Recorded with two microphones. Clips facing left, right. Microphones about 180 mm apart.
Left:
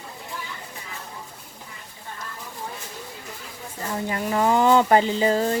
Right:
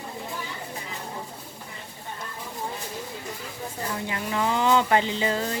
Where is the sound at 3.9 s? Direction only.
40° left (ahead or behind).